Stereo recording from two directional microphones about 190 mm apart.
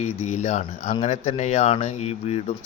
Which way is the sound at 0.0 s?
35° left (ahead or behind).